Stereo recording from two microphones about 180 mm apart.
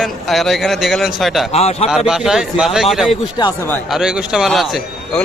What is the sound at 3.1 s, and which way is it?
Speech, 20° left (ahead or behind).